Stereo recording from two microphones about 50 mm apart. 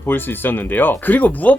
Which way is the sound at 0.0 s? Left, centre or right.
Left.